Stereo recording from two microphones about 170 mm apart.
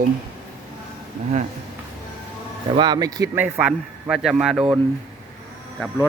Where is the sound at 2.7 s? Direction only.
25° right (ahead or behind).